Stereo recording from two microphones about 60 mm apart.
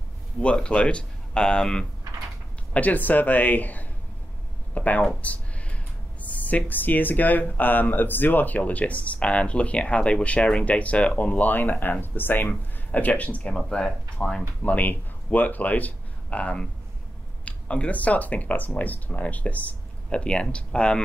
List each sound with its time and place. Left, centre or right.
0.7 s speech: centre
2.7 s speech: left
5.2 s a sound: left
6.2 s speech: left
14.6 s speech: left